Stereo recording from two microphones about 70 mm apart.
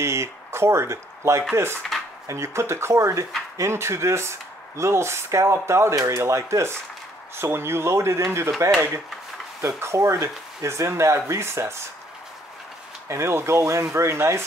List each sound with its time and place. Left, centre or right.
0.0 s speech: right
9.6 s speech: right
13.1 s speech: right